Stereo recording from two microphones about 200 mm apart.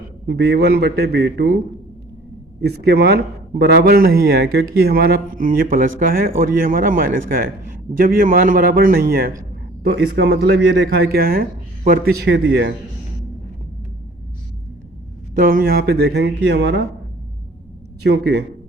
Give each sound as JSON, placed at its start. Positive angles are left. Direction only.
{"t": 0.3, "sound": "speech", "side_deg": -55}
{"t": 2.6, "sound": "speech", "side_deg": -55}
{"t": 15.4, "sound": "speech", "side_deg": -45}
{"t": 18.0, "sound": "speech", "side_deg": -55}